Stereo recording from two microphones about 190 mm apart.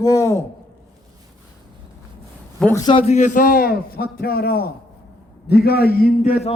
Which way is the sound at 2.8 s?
30° left (ahead or behind).